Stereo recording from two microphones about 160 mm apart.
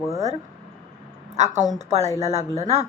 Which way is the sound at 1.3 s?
45° right (ahead or behind).